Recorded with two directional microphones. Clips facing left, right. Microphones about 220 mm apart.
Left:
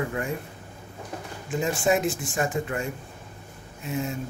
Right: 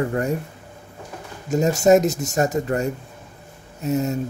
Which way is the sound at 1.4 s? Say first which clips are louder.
Right 8 dB; 40° right (ahead or behind).